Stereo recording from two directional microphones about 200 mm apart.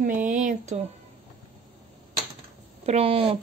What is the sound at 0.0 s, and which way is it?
Speech, 40° right (ahead or behind).